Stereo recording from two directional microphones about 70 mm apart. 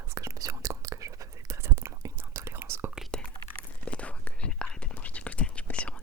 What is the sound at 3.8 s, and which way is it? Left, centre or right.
Whispering, centre.